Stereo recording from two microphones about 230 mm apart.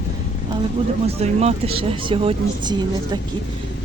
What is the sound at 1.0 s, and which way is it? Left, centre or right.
Speech, right.